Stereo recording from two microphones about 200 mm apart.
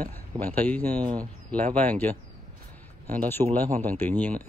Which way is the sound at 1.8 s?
10° left (ahead or behind).